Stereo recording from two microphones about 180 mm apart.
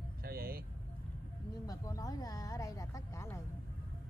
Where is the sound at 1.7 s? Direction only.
20° left (ahead or behind).